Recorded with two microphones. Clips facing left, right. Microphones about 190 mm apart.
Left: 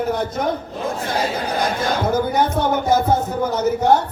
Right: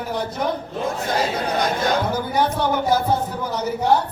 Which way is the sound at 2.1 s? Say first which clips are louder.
Left 3 dB; 45° left (ahead or behind).